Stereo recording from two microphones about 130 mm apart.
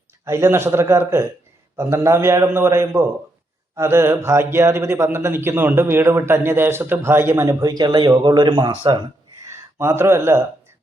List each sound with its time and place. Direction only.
0.3 s speech: 20° right (ahead or behind); by 9.0 s 40° right (ahead or behind)
9.4 s speech: 20° right (ahead or behind)